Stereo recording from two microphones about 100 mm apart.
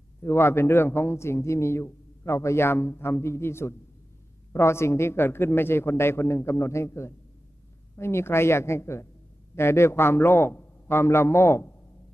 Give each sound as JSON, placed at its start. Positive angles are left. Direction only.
{"t": 0.2, "sound": "a man's voice", "side_deg": 25}